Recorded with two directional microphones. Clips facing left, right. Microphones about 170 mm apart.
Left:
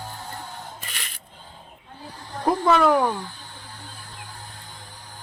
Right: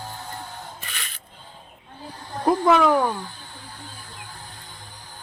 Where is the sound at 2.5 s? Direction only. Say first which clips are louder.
Right 1 dB; 5° right (ahead or behind).